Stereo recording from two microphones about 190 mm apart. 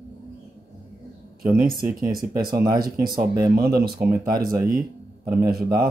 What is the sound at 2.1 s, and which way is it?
Speech, 50° right (ahead or behind).